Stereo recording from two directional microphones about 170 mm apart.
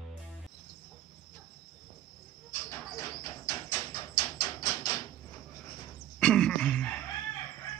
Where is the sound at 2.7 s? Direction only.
20° left (ahead or behind).